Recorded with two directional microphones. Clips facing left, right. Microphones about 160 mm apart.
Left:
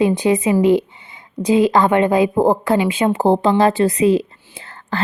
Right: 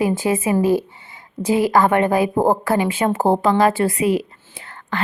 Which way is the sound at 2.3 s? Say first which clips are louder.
Left 2 dB; 10° right (ahead or behind).